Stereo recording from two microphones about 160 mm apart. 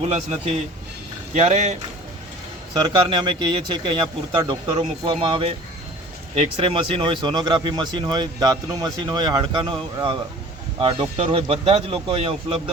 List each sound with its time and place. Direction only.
1.3 s speech: 45° right (ahead or behind)
2.7 s speech: 30° right (ahead or behind)